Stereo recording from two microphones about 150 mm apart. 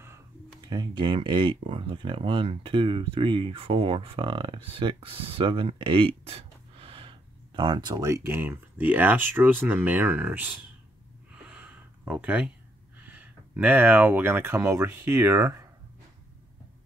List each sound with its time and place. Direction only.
0.0 s speech: 20° right (ahead or behind)
11.4 s a sound: 10° right (ahead or behind)
13.0 s speech: 10° right (ahead or behind)